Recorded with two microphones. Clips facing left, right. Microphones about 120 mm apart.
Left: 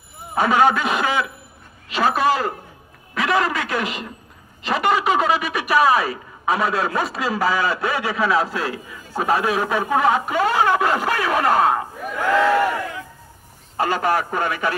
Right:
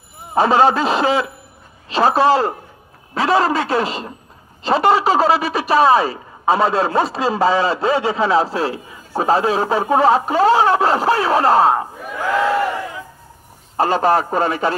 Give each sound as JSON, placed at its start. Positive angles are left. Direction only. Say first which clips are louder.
{"t": 0.3, "sound": "a man's voice", "louder": "right 3 dB", "side_deg": -30}
{"t": 13.7, "sound": "speech", "louder": "right 5 dB", "side_deg": -30}